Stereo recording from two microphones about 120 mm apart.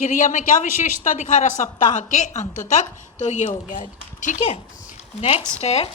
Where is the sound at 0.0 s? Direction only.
90° left.